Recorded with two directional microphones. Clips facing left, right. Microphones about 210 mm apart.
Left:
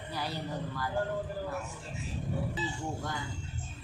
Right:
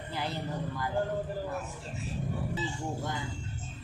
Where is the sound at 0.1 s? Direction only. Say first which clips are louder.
Right 1 dB; 25° right (ahead or behind).